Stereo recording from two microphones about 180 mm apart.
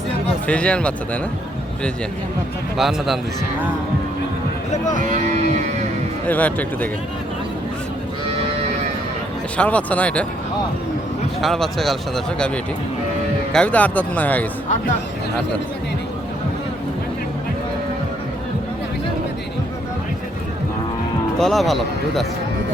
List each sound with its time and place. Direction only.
0.4 s speech: 5° left (ahead or behind)
2.7 s speech: centre (ahead or behind)
4.9 s speech: 45° right (ahead or behind)
6.2 s speech: 10° left (ahead or behind)
9.6 s speech: 5° left (ahead or behind)
11.3 s speech: centre (ahead or behind)
13.5 s speech: 5° left (ahead or behind)
21.3 s speech: centre (ahead or behind)